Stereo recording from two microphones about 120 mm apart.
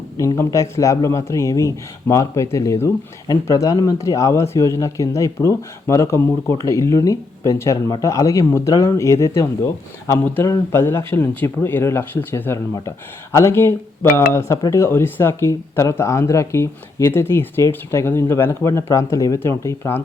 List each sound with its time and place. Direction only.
0.3 s speech: 25° left (ahead or behind)